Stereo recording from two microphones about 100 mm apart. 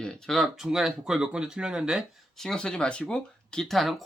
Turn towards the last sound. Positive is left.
turn(degrees=0)  # may be behind; listen again after turning